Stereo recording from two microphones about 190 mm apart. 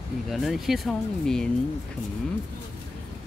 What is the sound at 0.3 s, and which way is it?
Speech, centre (ahead or behind).